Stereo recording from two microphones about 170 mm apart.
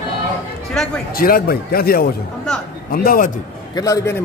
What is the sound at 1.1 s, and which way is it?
A man's voice, 60° left (ahead or behind).